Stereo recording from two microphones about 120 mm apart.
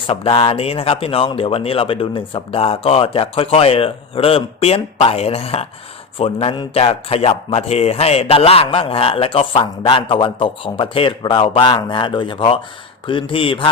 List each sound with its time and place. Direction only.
0.1 s a man's voice: 50° left (ahead or behind)